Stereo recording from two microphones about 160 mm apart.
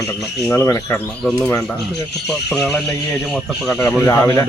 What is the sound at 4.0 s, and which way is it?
Speech, 15° left (ahead or behind).